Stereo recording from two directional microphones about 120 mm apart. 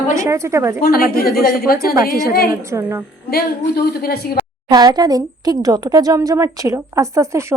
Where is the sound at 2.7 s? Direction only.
20° right (ahead or behind).